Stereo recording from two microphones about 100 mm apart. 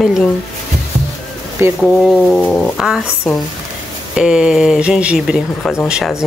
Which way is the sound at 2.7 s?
5° right (ahead or behind).